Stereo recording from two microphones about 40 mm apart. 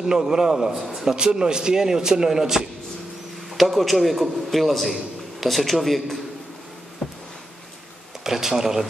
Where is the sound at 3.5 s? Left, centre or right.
Centre.